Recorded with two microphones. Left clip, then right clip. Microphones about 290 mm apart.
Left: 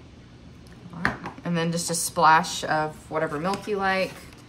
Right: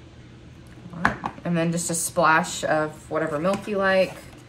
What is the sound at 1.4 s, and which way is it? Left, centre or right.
A woman's voice, centre.